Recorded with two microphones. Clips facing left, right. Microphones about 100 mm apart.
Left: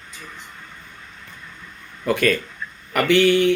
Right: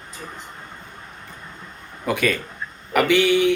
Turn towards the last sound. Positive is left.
turn(degrees=-15)  # may be behind; listen again after turning